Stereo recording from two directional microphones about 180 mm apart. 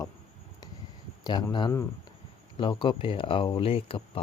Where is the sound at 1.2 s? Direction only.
25° left (ahead or behind).